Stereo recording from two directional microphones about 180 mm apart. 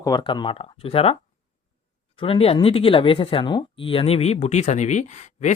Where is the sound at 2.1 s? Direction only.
30° left (ahead or behind).